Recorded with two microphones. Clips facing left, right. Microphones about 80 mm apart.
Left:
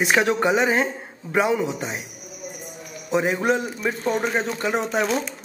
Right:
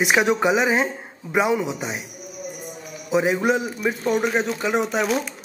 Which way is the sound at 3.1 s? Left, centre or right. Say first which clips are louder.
Right 1 dB; centre.